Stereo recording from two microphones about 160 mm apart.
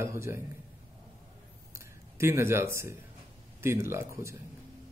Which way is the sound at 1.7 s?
15° right (ahead or behind).